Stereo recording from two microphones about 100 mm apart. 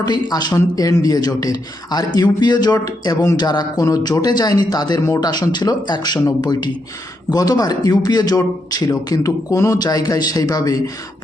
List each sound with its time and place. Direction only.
0.0 s speech: 40° left (ahead or behind)